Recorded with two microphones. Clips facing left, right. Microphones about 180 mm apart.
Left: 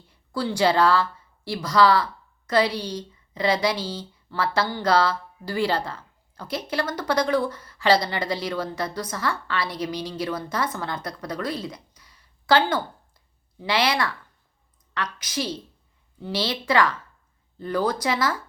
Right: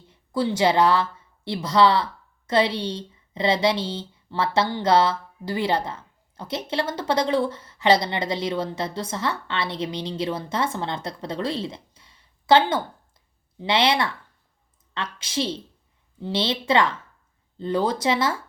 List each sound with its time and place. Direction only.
0.1 s a woman's voice: 20° right (ahead or behind)